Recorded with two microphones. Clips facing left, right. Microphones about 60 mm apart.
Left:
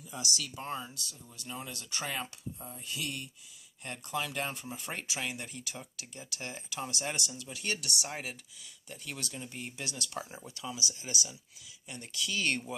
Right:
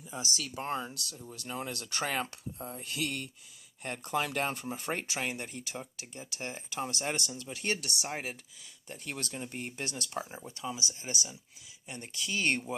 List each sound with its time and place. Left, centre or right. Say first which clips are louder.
0.2 s speech: right 1 dB; right
10.2 s speech: right 2 dB; right